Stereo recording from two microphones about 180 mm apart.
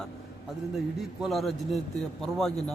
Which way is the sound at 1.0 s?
Centre (ahead or behind).